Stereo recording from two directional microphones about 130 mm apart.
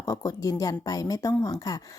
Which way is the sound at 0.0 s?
25° left (ahead or behind).